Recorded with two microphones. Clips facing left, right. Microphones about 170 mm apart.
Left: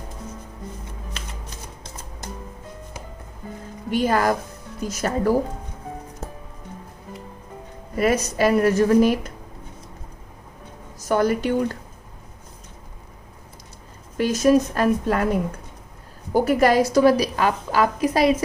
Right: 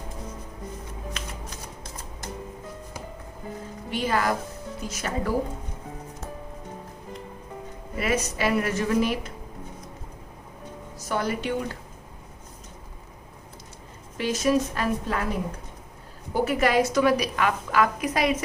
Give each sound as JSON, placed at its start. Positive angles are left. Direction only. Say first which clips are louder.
{"t": 3.9, "sound": "a woman's voice", "louder": "left 5 dB", "side_deg": 45}
{"t": 7.9, "sound": "a woman's voice", "louder": "left 6 dB", "side_deg": 40}
{"t": 11.1, "sound": "a woman's voice", "louder": "left 7 dB", "side_deg": 45}
{"t": 14.2, "sound": "a woman's voice", "louder": "left 6 dB", "side_deg": 45}
{"t": 16.3, "sound": "a woman's voice", "louder": "left 5 dB", "side_deg": 40}